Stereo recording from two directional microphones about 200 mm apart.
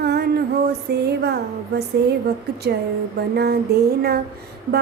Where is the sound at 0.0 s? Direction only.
55° right (ahead or behind).